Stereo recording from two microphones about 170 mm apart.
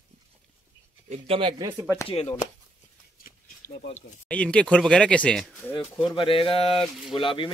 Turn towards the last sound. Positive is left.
turn(degrees=30)  # may be behind; listen again after turning